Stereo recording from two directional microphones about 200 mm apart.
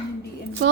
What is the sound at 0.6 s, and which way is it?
Speech, 70° right (ahead or behind).